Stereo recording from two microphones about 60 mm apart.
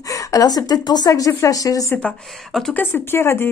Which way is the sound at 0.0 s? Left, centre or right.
Left.